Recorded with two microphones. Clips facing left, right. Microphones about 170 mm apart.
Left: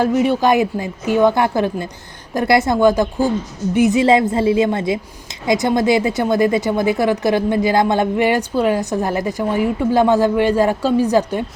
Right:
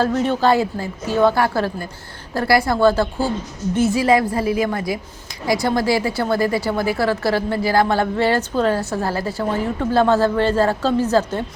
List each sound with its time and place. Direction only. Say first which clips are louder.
0.0 s a woman's voice: left 2 dB; 15° left (ahead or behind)